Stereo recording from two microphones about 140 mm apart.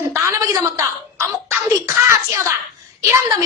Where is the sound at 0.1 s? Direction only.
20° right (ahead or behind).